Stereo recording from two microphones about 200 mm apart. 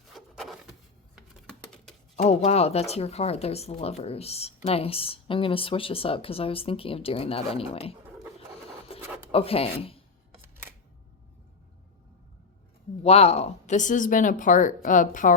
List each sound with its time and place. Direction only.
0.1 s a sound: centre (ahead or behind)
1.1 s patter: centre (ahead or behind)
2.3 s speech: 30° left (ahead or behind)
8.9 s writing: 30° left (ahead or behind)
9.3 s speech: 30° left (ahead or behind)
13.0 s a woman's voice: 30° left (ahead or behind)